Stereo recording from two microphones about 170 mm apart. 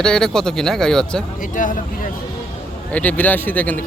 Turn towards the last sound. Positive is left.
turn(degrees=10)  # may be behind; listen again after turning